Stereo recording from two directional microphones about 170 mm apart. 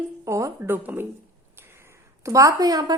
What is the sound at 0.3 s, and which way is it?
Speech, 15° right (ahead or behind).